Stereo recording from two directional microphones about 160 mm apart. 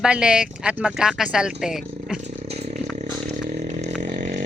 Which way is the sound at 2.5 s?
40° right (ahead or behind).